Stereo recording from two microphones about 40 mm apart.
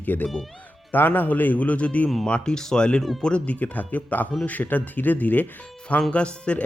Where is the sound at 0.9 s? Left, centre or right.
Left.